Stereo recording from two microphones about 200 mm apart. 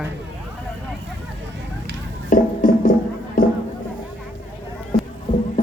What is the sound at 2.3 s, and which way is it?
Music, 45° left (ahead or behind).